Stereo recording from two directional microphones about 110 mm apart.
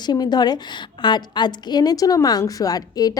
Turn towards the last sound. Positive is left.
turn(degrees=35)  # may be behind; listen again after turning